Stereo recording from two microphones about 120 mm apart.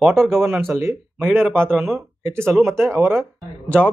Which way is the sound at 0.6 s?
20° right (ahead or behind).